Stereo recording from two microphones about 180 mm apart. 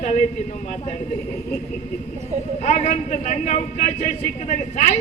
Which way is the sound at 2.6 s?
40° left (ahead or behind).